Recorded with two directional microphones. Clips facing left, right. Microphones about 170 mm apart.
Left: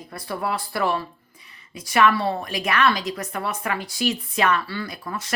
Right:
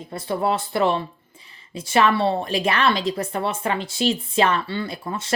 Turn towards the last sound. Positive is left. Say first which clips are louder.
# right 4 dB
turn(degrees=-25)  # may be behind; listen again after turning